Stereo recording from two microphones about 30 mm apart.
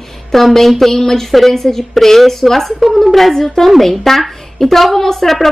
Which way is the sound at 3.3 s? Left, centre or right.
Centre.